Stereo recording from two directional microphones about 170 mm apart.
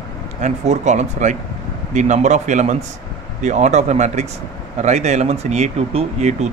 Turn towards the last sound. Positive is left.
turn(degrees=-40)  # may be behind; listen again after turning